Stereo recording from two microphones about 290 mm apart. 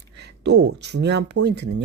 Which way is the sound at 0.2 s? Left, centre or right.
Right.